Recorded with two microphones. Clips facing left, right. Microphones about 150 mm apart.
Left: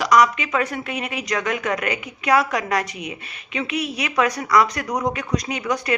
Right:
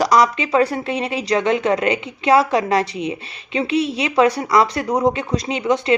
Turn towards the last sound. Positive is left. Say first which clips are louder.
# right 5 dB
turn(degrees=-25)  # may be behind; listen again after turning